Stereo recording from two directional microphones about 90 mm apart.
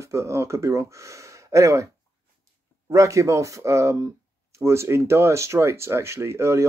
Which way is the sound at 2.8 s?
35° right (ahead or behind).